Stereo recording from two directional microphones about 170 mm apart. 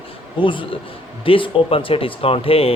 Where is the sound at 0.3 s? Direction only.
30° left (ahead or behind).